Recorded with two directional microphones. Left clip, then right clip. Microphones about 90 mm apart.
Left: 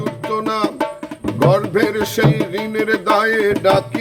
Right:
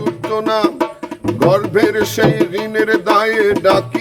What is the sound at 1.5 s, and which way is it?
Music, 40° right (ahead or behind).